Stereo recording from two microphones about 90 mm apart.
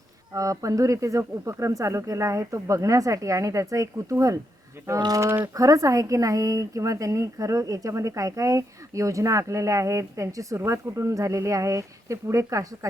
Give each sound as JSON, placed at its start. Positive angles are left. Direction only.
{"t": 0.3, "sound": "speech", "side_deg": -40}